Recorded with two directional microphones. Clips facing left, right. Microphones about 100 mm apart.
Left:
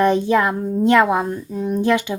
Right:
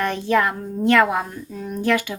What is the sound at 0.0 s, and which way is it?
A child's voice, 20° left (ahead or behind).